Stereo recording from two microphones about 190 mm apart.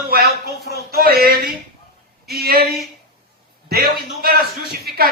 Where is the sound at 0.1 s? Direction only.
55° right (ahead or behind).